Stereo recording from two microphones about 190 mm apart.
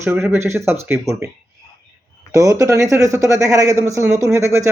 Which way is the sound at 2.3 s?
15° right (ahead or behind).